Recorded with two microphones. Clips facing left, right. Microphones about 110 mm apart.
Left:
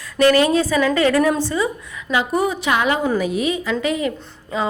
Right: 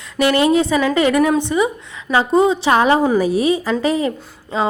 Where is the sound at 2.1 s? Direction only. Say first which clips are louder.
Right 5 dB; 30° right (ahead or behind).